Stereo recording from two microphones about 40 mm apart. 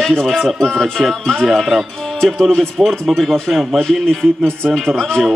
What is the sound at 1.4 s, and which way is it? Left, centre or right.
Speech, centre.